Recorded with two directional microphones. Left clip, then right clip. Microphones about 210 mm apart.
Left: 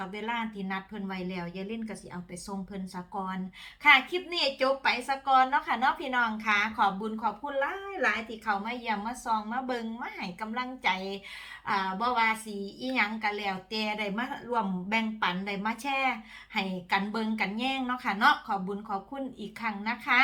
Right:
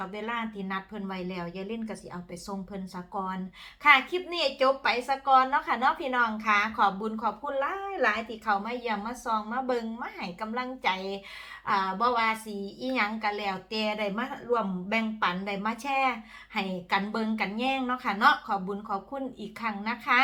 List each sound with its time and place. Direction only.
0.0 s a woman's voice: centre (ahead or behind)